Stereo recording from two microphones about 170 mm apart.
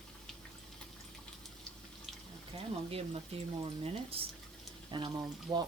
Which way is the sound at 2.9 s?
35° right (ahead or behind).